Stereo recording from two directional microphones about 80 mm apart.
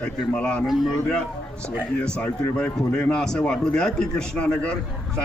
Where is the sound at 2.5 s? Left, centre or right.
Centre.